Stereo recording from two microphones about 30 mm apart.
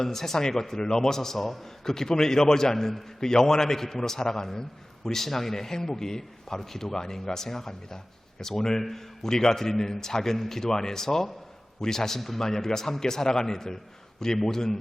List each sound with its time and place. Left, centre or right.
0.0 s a man's voice: centre